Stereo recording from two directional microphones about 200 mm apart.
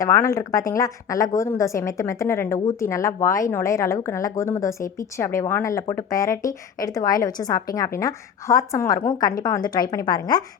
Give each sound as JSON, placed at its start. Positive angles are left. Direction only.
{"t": 0.0, "sound": "a woman's voice", "side_deg": 15}